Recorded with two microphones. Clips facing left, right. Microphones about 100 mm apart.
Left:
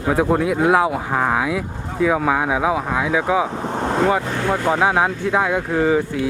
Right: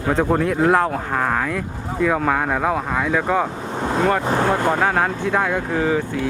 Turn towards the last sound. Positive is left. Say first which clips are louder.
# left 2 dB
turn(degrees=0)  # may be behind; listen again after turning